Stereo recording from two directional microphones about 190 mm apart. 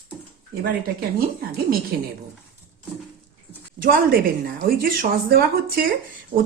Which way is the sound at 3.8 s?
50° right (ahead or behind).